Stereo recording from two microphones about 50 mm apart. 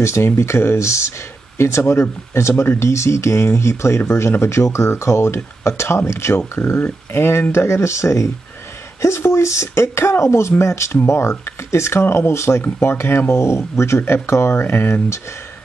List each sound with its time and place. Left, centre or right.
0.0 s speech: left
1.6 s speech: left
2.8 s speech: left